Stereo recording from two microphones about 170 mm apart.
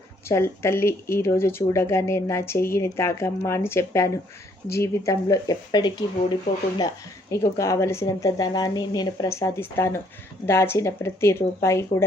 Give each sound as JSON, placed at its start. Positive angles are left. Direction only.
{"t": 0.3, "sound": "speech", "side_deg": 15}